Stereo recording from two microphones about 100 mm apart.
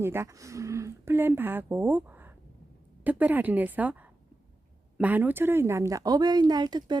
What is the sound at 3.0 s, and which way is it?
Speech, 15° right (ahead or behind).